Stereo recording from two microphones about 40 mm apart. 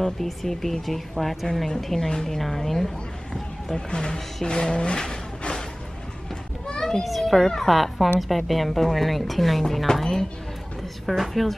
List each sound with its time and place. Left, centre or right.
0.0 s a woman's voice: centre
2.0 s speech: centre
3.7 s speech: centre
6.7 s children playing: centre
7.1 s a woman's voice: centre
11.1 s a woman's voice: centre